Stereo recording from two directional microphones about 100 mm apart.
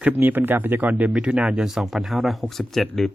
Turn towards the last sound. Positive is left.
turn(degrees=0)  # may be behind; listen again after turning